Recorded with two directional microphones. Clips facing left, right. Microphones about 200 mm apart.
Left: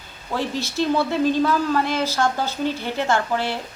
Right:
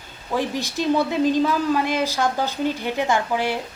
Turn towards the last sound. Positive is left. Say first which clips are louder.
# even
turn(degrees=-15)  # may be behind; listen again after turning